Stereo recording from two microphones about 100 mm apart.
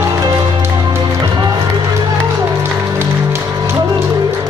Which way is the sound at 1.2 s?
45° right (ahead or behind).